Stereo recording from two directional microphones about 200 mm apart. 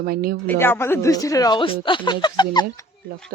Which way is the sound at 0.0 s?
45° right (ahead or behind).